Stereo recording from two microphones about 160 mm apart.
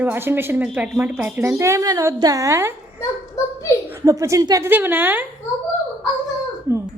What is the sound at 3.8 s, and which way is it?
A woman's voice, 15° right (ahead or behind).